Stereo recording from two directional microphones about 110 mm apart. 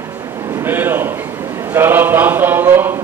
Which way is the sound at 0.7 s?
20° right (ahead or behind).